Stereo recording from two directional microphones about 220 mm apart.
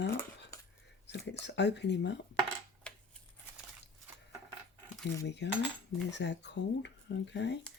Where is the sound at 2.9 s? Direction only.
5° left (ahead or behind).